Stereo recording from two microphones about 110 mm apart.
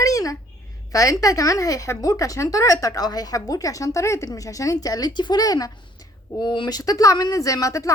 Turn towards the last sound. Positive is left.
turn(degrees=30)  # may be behind; listen again after turning